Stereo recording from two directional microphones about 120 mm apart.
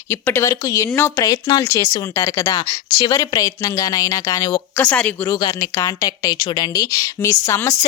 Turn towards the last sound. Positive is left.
turn(degrees=25)  # may be behind; listen again after turning